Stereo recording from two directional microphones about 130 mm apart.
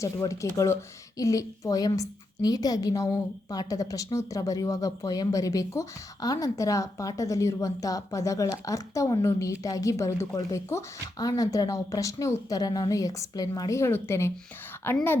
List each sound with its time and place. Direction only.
0.0 s a woman's voice: 25° left (ahead or behind)